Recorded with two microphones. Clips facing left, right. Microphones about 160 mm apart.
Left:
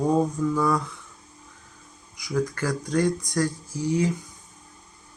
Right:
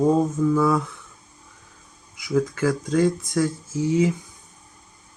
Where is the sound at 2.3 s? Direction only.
5° right (ahead or behind).